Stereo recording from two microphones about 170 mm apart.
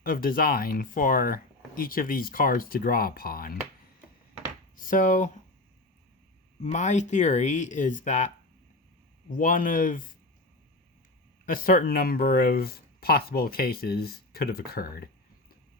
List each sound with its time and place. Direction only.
0.0 s speech: 60° left (ahead or behind)
4.8 s speech: 50° left (ahead or behind)
6.6 s speech: 45° left (ahead or behind)
9.3 s speech: 50° left (ahead or behind)
11.4 s speech: 55° left (ahead or behind)